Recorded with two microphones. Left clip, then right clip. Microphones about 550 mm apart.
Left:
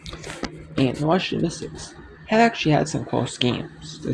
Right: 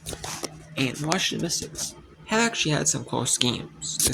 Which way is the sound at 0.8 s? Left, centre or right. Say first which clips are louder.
Left 4 dB; right.